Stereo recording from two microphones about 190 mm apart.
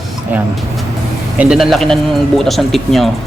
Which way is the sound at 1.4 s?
5° right (ahead or behind).